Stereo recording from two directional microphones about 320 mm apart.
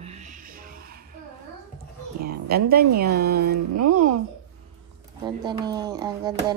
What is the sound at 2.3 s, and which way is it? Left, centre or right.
Speech, right.